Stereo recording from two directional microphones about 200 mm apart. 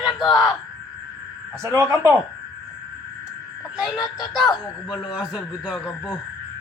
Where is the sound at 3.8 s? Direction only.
20° left (ahead or behind).